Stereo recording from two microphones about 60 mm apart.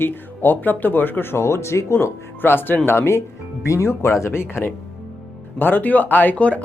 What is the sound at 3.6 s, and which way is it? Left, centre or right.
Speech, left.